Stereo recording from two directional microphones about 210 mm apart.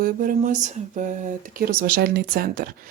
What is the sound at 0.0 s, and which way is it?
Speech, 40° right (ahead or behind).